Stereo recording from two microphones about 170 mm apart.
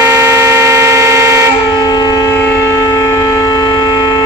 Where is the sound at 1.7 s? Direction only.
20° left (ahead or behind).